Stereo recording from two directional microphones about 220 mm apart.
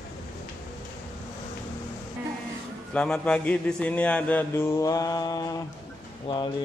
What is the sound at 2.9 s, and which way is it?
Speech, 5° left (ahead or behind).